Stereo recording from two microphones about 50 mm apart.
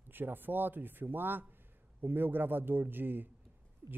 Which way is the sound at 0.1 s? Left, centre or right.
Right.